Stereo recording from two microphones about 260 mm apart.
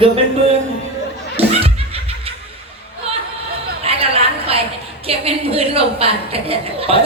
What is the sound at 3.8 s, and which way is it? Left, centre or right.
Chatter, right.